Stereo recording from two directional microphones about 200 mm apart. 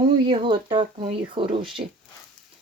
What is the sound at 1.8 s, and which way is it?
Speech, 40° right (ahead or behind).